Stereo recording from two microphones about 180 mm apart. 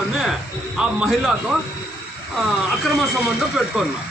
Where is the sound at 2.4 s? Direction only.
Centre (ahead or behind).